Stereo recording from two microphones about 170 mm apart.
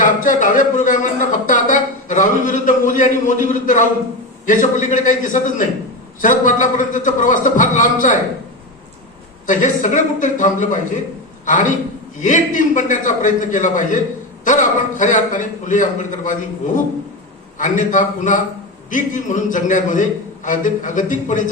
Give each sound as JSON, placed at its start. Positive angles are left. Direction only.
{"t": 0.0, "sound": "a man's voice", "side_deg": 50}
{"t": 9.5, "sound": "a man's voice", "side_deg": 50}